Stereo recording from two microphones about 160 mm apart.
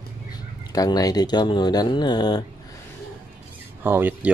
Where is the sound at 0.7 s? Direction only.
25° left (ahead or behind).